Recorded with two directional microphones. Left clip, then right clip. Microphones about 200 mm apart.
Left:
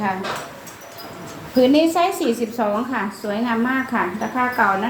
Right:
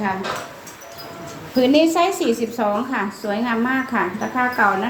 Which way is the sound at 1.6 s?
15° right (ahead or behind).